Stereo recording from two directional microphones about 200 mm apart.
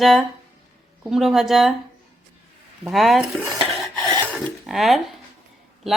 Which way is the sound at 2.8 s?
Centre (ahead or behind).